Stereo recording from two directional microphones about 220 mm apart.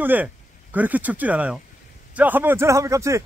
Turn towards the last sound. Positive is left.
turn(degrees=-15)  # may be behind; listen again after turning